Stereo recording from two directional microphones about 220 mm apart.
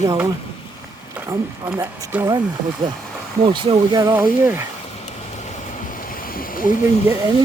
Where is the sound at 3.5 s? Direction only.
20° right (ahead or behind).